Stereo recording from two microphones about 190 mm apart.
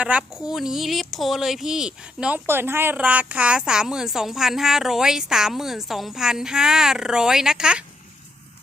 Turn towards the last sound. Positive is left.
turn(degrees=-5)  # may be behind; listen again after turning